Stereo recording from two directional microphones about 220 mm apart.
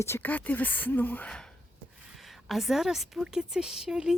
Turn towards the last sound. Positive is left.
turn(degrees=-5)  # may be behind; listen again after turning